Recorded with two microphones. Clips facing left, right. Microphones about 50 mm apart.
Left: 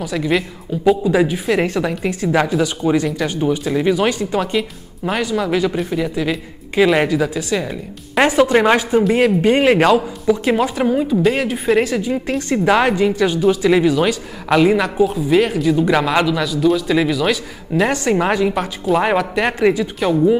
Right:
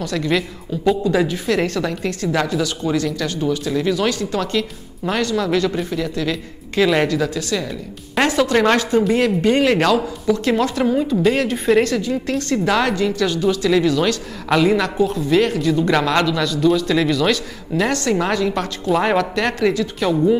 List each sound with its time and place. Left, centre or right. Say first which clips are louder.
0.0 s speech: left 1 dB; centre